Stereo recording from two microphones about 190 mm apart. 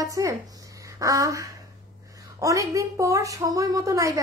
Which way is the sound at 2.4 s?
15° right (ahead or behind).